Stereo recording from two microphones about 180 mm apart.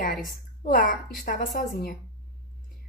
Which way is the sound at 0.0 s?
50° left (ahead or behind).